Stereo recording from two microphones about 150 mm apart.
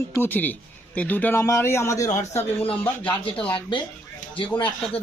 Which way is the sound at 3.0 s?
35° left (ahead or behind).